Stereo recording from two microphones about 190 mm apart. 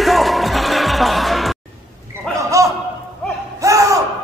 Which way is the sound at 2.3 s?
5° left (ahead or behind).